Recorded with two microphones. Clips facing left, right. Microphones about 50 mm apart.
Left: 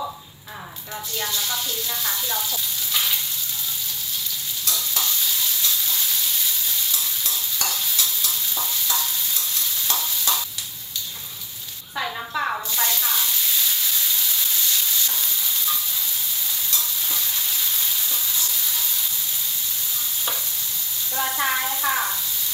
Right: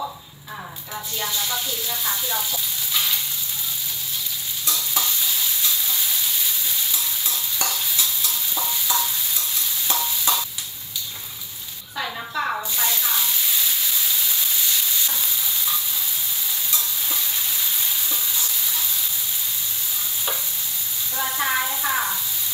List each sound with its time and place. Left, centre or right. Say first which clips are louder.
1.5 s speech: right 1 dB; centre
4.6 s stir: right 2 dB; centre
11.9 s a sound: left 1 dB; centre
13.0 s frying: even; centre
21.2 s sizzle: left 1 dB; centre
21.8 s a sound: left 1 dB; centre